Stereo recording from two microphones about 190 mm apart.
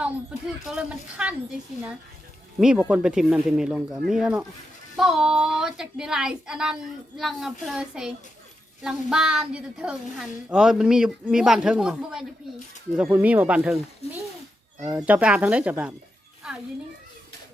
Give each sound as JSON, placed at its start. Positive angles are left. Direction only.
{"t": 0.0, "sound": "a woman's voice", "side_deg": -5}
{"t": 2.6, "sound": "a woman's voice", "side_deg": -5}
{"t": 14.0, "sound": "speech", "side_deg": 35}
{"t": 14.8, "sound": "speech", "side_deg": -10}